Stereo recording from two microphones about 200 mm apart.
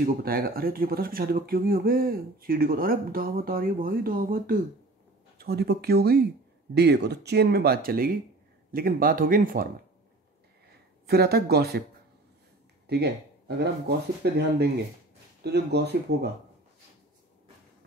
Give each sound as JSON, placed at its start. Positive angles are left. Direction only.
{"t": 0.0, "sound": "speech", "side_deg": -45}
{"t": 11.1, "sound": "speech", "side_deg": -50}
{"t": 12.8, "sound": "speech", "side_deg": -55}